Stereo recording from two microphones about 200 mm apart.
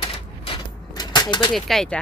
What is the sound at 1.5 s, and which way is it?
Speech, centre (ahead or behind).